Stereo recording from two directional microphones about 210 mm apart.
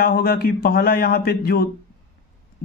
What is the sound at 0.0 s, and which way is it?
A man's voice, 45° left (ahead or behind).